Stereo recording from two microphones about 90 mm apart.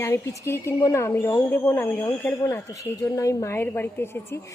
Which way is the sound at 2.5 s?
35° left (ahead or behind).